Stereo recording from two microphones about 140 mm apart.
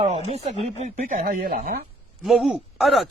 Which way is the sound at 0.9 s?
60° right (ahead or behind).